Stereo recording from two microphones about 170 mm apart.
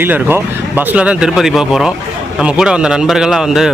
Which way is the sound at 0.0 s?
10° right (ahead or behind).